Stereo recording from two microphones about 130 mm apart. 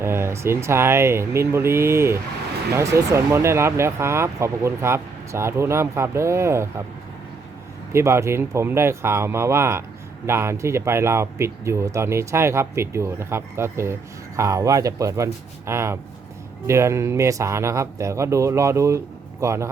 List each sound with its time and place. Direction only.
0.0 s speech: 20° right (ahead or behind)
7.9 s speech: 20° right (ahead or behind)